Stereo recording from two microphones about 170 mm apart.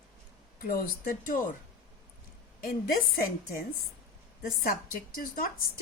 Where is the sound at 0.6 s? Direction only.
60° left (ahead or behind).